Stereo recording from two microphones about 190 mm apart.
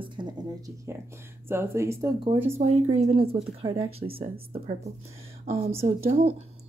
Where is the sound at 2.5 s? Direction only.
35° right (ahead or behind).